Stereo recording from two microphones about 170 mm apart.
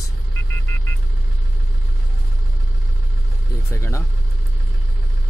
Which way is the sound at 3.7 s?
15° left (ahead or behind).